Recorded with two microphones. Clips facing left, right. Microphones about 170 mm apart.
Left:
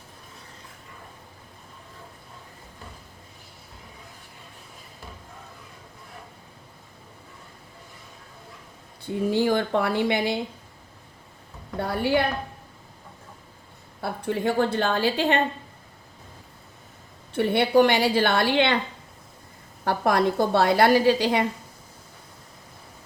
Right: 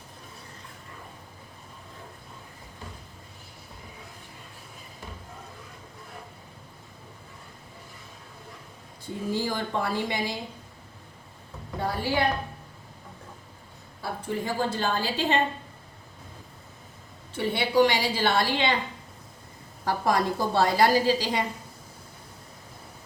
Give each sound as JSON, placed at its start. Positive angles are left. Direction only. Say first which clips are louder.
{"t": 9.3, "sound": "a woman's voice", "louder": "left 6 dB", "side_deg": 65}
{"t": 11.8, "sound": "a woman's voice", "louder": "left 4 dB", "side_deg": 65}
{"t": 14.0, "sound": "a woman's voice", "louder": "left 5 dB", "side_deg": 65}
{"t": 17.3, "sound": "a woman's voice", "louder": "left 4 dB", "side_deg": 60}
{"t": 19.8, "sound": "a woman's voice", "louder": "left 3 dB", "side_deg": 65}